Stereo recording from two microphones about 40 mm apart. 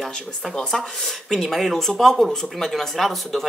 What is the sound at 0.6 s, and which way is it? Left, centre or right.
Speech, centre.